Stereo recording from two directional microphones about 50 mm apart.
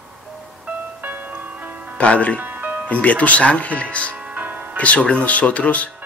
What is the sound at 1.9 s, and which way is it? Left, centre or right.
Speech, left.